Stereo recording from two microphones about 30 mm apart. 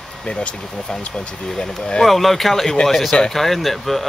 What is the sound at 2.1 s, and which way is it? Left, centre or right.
Speech, centre.